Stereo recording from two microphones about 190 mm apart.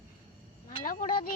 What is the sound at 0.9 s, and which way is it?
Speech, 45° left (ahead or behind).